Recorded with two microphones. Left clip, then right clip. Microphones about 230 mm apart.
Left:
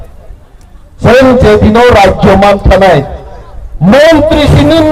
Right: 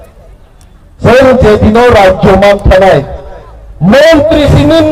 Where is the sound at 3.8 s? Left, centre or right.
Left.